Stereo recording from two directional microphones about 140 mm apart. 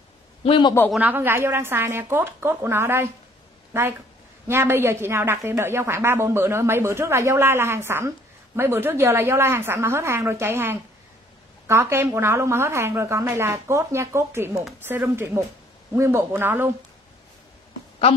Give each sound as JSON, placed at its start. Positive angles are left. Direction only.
{"t": 0.4, "sound": "a man's voice", "side_deg": 35}
{"t": 0.9, "sound": "a woman's voice", "side_deg": -15}
{"t": 4.5, "sound": "a woman's voice", "side_deg": -15}